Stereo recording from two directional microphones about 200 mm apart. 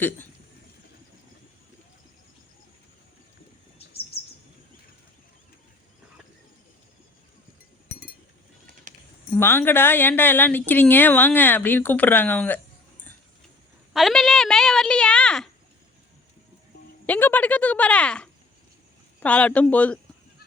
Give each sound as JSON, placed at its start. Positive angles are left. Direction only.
{"t": 3.8, "sound": "chirp", "side_deg": 30}
{"t": 9.3, "sound": "speech", "side_deg": 10}
{"t": 13.9, "sound": "speech", "side_deg": 0}
{"t": 17.1, "sound": "speech", "side_deg": 10}